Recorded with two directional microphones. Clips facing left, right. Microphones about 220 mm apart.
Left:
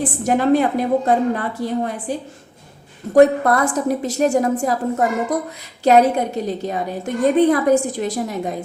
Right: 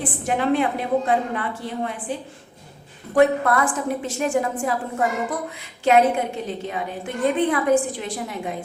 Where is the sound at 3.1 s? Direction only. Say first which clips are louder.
Left 5 dB; 40° left (ahead or behind).